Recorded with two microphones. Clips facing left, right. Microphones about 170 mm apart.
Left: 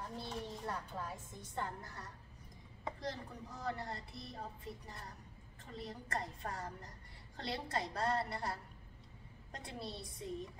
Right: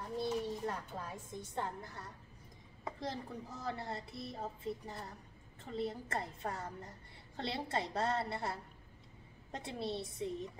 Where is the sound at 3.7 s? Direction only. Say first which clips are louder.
Right 3 dB; 25° right (ahead or behind).